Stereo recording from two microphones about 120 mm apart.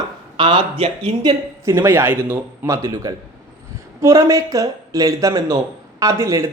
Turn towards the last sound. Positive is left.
turn(degrees=-25)  # may be behind; listen again after turning